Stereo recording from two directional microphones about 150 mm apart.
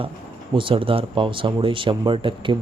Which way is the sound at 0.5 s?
35° right (ahead or behind).